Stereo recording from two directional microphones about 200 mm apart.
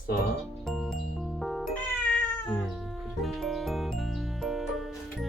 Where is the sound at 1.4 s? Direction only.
Centre (ahead or behind).